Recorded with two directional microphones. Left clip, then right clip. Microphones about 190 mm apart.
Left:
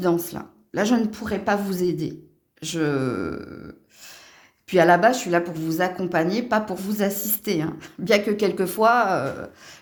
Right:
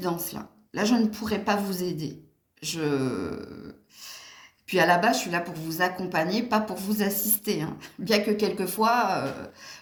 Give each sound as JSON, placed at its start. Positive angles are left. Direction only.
{"t": 0.0, "sound": "speech", "side_deg": 45}
{"t": 4.7, "sound": "speech", "side_deg": 45}